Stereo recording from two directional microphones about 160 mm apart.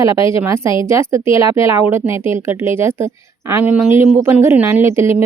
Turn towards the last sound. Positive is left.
turn(degrees=-15)  # may be behind; listen again after turning